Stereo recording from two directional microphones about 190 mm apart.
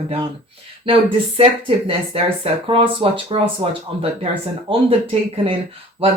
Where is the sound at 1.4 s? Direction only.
30° right (ahead or behind).